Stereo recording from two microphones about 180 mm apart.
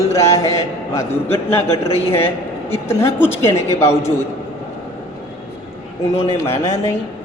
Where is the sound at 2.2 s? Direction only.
30° left (ahead or behind).